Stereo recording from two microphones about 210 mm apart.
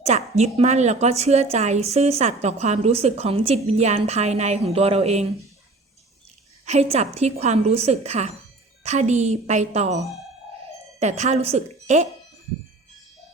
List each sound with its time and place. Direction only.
0.0 s a woman's voice: 30° right (ahead or behind)
6.7 s a woman's voice: 30° right (ahead or behind)
11.0 s a woman's voice: 30° right (ahead or behind)